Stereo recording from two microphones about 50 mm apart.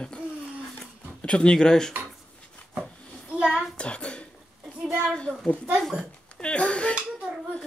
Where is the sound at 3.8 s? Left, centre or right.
Left.